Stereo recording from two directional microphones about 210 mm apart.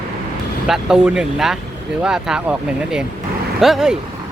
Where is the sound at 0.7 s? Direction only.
5° right (ahead or behind).